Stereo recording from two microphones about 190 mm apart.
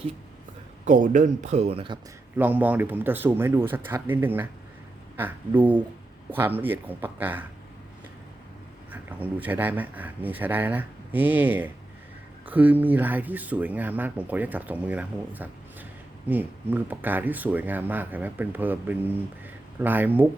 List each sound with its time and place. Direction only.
0.9 s speech: 45° right (ahead or behind)
2.3 s speech: 10° right (ahead or behind)
8.9 s speech: 10° right (ahead or behind)